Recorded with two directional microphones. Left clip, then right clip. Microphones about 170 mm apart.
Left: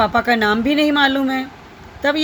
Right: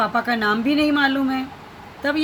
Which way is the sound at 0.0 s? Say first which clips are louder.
Left 5 dB; 50° left (ahead or behind).